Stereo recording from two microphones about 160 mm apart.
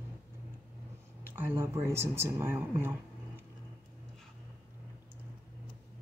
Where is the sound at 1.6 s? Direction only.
15° right (ahead or behind).